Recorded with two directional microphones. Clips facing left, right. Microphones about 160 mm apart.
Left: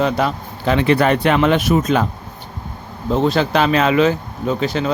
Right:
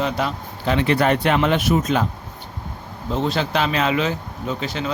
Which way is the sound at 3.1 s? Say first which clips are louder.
Left 6 dB; 50° left (ahead or behind).